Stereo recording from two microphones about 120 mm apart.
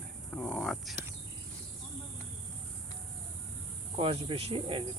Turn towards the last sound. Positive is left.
turn(degrees=-50)  # may be behind; listen again after turning